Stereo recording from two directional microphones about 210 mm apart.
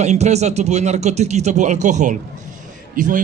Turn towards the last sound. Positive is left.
turn(degrees=-40)  # may be behind; listen again after turning